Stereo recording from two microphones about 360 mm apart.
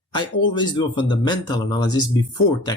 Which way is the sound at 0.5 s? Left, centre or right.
Centre.